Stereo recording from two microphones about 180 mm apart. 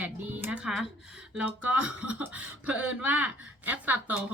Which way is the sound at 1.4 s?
10° right (ahead or behind).